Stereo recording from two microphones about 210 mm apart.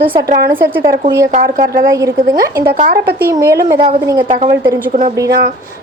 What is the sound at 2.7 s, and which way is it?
Speech, 45° right (ahead or behind).